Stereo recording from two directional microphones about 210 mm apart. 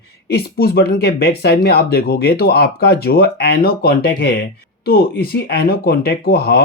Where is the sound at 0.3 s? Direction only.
50° left (ahead or behind).